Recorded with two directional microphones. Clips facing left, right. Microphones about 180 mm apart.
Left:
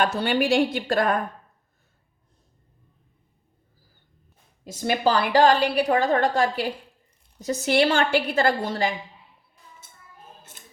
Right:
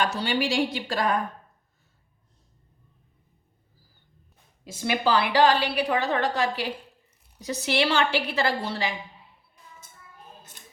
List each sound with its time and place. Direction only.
0.0 s a woman's voice: 55° left (ahead or behind)
4.6 s a woman's voice: 45° left (ahead or behind)